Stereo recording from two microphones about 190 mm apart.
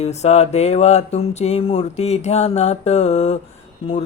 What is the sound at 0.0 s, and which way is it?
Speech, 35° left (ahead or behind).